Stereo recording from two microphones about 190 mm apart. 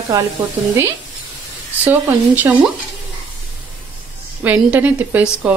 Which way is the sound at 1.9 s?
10° right (ahead or behind).